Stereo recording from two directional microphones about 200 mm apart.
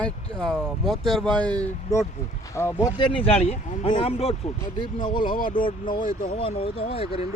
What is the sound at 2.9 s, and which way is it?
Speech, 30° left (ahead or behind).